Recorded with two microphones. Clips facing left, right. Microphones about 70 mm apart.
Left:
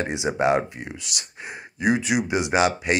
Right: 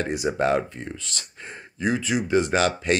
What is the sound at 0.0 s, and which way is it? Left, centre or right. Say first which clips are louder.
Speech: left 1 dB; centre.